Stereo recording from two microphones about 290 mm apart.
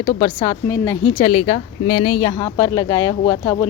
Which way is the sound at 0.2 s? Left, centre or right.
Centre.